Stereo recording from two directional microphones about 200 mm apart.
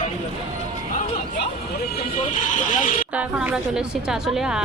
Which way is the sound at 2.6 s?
40° left (ahead or behind).